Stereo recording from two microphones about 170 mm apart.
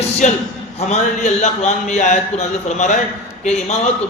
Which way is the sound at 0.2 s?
45° left (ahead or behind).